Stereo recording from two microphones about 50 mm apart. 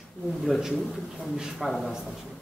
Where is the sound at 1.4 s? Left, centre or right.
Centre.